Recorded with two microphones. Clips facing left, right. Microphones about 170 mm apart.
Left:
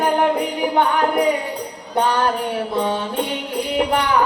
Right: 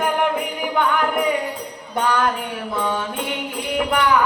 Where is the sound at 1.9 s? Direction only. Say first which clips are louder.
Left 2 dB; 30° left (ahead or behind).